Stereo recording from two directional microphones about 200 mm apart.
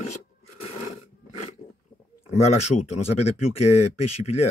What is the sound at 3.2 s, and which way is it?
Speech, 30° left (ahead or behind).